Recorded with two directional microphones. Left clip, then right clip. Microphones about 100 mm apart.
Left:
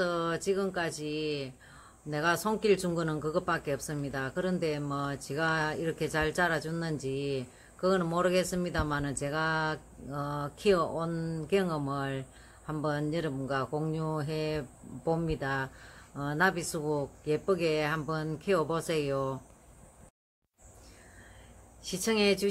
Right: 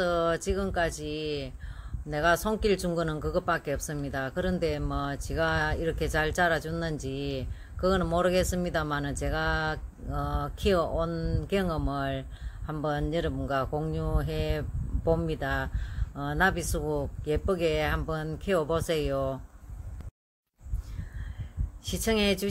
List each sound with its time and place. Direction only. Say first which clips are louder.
0.0 s speech: right 4 dB; 25° right (ahead or behind)
11.1 s speech: right 2 dB; 15° right (ahead or behind)
11.4 s speech: left 1 dB; 25° right (ahead or behind)
21.8 s speech: right 1 dB; 30° right (ahead or behind)